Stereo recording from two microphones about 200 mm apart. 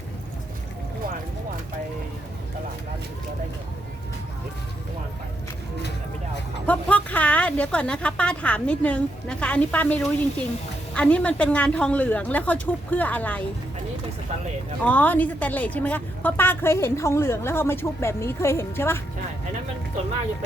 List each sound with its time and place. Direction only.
6.7 s a woman's voice: 5° left (ahead or behind)
14.8 s a woman's voice: 10° left (ahead or behind)